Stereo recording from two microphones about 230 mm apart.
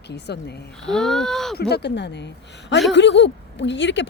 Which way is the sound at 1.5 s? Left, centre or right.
Left.